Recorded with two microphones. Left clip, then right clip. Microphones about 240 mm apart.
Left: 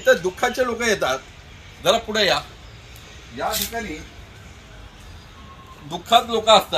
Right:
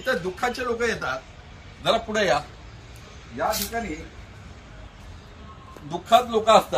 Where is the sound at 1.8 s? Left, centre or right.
Centre.